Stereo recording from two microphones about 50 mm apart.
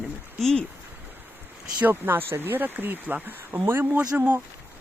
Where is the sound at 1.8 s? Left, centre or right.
Right.